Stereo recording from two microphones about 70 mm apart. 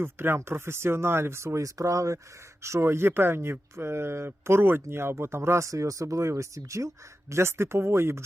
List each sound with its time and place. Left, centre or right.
0.0 s speech: right